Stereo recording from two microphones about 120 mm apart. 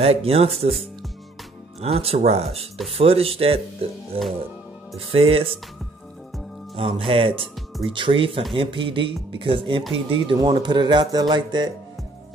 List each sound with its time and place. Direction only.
0.0 s speech: 55° right (ahead or behind)
6.7 s speech: 50° right (ahead or behind)